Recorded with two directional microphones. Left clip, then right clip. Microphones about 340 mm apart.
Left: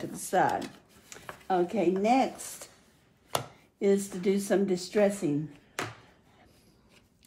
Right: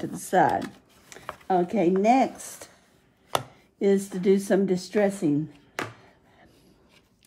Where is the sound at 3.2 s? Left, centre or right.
Centre.